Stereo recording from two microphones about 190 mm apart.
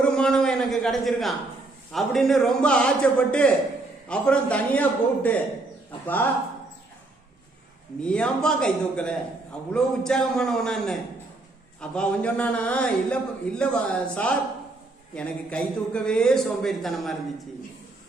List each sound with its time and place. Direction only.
0.0 s a sound: 5° left (ahead or behind)
1.9 s a man's voice: centre (ahead or behind)
8.0 s a man's voice: 5° left (ahead or behind)